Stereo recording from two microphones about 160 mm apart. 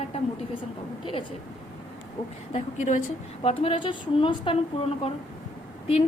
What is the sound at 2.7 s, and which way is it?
Speech, 50° left (ahead or behind).